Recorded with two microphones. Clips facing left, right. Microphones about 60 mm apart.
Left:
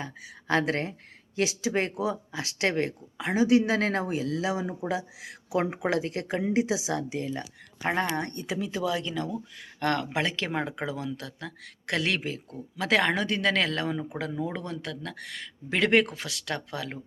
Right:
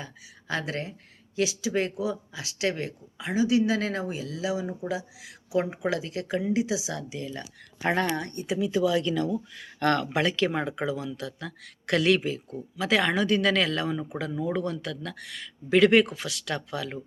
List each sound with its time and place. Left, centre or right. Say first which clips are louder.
0.0 s speech: left 4 dB; left
8.3 s speech: right 4 dB; left